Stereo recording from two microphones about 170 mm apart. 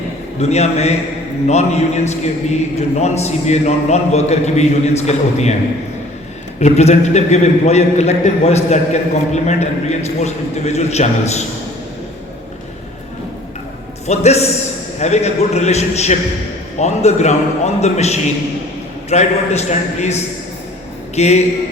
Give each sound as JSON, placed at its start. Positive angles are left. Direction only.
{"t": 0.3, "sound": "a man's voice", "side_deg": 40}
{"t": 6.6, "sound": "a man's voice", "side_deg": 40}
{"t": 14.1, "sound": "a man's voice", "side_deg": 40}
{"t": 21.2, "sound": "a man's voice", "side_deg": 40}